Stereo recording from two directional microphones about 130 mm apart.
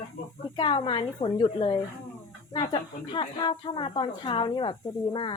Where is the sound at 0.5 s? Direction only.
40° left (ahead or behind).